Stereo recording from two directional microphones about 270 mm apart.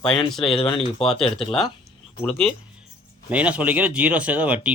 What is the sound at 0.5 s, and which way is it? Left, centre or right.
Speech, centre.